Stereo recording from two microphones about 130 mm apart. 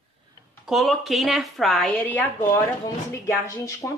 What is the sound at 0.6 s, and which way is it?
A woman's voice, centre (ahead or behind).